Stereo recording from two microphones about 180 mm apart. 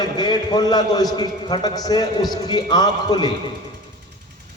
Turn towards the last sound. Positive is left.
turn(degrees=25)  # may be behind; listen again after turning